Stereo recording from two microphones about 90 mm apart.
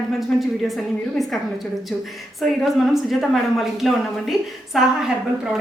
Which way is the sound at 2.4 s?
Centre (ahead or behind).